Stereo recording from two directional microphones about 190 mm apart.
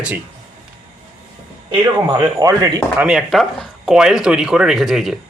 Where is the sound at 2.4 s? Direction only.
20° right (ahead or behind).